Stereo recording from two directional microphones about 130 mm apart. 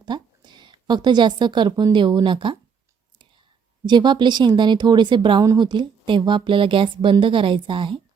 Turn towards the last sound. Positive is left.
turn(degrees=-40)  # may be behind; listen again after turning